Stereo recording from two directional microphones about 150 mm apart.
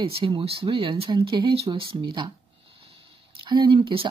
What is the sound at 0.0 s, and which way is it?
Speech, 35° right (ahead or behind).